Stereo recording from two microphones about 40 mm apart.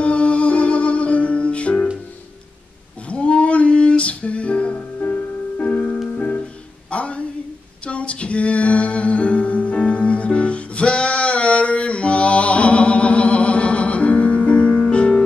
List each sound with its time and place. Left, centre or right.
0.0 s music: left
3.1 s music: left
6.9 s a sound: left
7.8 s music: left